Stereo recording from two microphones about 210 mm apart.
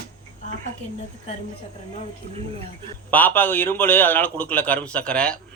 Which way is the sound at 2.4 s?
30° right (ahead or behind).